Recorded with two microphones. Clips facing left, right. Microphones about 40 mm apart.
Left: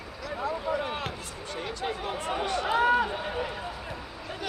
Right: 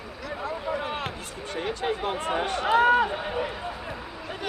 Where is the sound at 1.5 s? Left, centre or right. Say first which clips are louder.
Right 5 dB; right.